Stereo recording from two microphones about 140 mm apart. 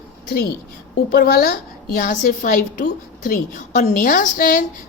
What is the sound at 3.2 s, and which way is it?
A woman's voice, 65° left (ahead or behind).